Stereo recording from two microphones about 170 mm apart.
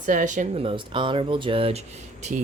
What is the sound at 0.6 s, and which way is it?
Speech, 30° right (ahead or behind).